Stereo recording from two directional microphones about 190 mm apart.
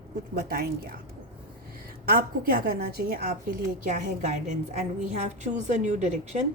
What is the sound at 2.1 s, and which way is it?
A woman's voice, 55° right (ahead or behind).